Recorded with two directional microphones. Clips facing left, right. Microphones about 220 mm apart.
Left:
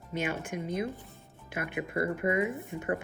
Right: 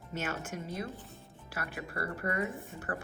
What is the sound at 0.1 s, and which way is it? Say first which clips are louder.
Speech: left 4 dB; 15° left (ahead or behind).